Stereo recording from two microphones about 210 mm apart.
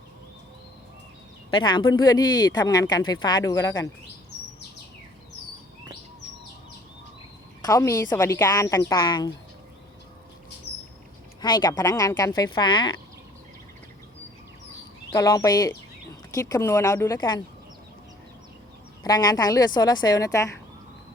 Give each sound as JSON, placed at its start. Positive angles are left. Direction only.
{"t": 1.5, "sound": "speech", "side_deg": 20}
{"t": 7.6, "sound": "a woman's voice", "side_deg": 15}
{"t": 11.3, "sound": "speech", "side_deg": 20}
{"t": 15.1, "sound": "a woman's voice", "side_deg": 15}
{"t": 19.0, "sound": "speech", "side_deg": 20}